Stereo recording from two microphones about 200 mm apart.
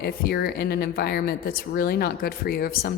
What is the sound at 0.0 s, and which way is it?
A woman's voice, 55° left (ahead or behind).